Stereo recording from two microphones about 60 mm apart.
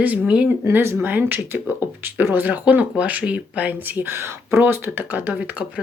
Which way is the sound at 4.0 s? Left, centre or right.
Right.